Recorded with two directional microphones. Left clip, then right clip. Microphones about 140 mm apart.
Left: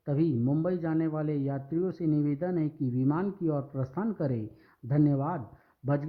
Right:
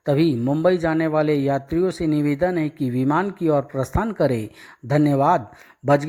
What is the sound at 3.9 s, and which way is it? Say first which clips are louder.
Speech: right 12 dB; 25° right (ahead or behind).